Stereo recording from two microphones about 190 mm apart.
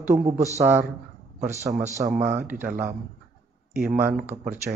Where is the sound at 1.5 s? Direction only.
35° right (ahead or behind).